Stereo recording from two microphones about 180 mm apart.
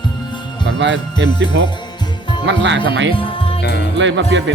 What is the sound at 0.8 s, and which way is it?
Speech, 80° right.